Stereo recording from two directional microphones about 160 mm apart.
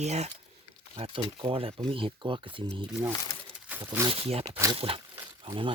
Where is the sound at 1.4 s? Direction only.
35° right (ahead or behind).